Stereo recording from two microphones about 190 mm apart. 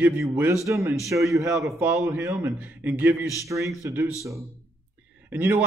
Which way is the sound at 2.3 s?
15° right (ahead or behind).